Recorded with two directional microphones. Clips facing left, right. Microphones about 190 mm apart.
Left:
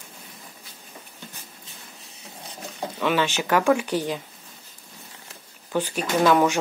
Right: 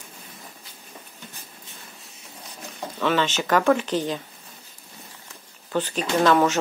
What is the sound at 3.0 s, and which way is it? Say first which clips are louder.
Speech: right 1 dB; 10° left (ahead or behind).